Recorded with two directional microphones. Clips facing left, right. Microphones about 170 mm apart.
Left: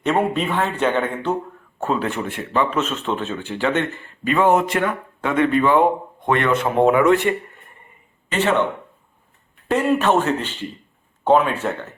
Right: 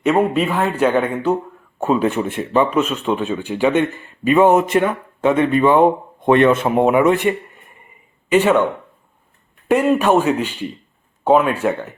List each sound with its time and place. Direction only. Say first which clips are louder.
0.0 s a man's voice: right 4 dB; 5° right (ahead or behind)
10.0 s speech: right 3 dB; 10° right (ahead or behind)